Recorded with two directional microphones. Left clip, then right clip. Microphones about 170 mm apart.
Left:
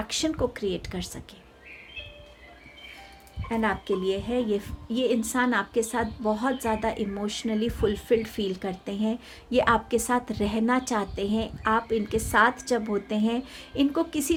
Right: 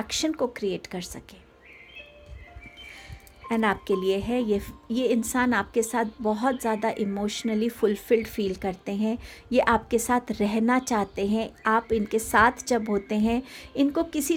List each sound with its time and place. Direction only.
0.1 s speech: 30° right (ahead or behind)
3.5 s a woman's voice: 45° right (ahead or behind)